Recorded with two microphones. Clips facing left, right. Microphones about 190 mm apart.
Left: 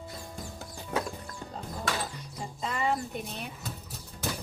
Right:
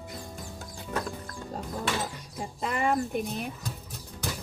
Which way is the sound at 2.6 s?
55° right (ahead or behind).